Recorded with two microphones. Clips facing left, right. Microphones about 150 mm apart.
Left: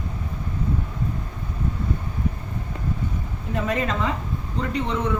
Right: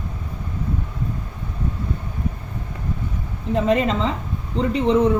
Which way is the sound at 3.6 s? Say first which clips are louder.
Right 5 dB; 25° right (ahead or behind).